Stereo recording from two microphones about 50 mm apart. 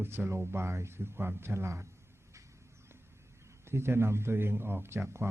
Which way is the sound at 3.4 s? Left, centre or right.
Right.